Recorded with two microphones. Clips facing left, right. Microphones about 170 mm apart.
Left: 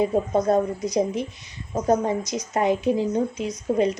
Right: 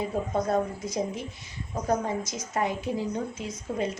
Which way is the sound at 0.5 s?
20° left (ahead or behind).